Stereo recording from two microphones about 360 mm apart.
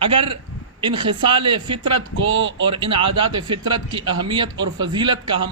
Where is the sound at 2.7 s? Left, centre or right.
Centre.